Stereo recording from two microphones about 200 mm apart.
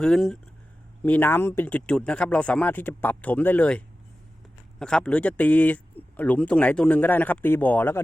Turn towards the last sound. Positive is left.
turn(degrees=10)  # may be behind; listen again after turning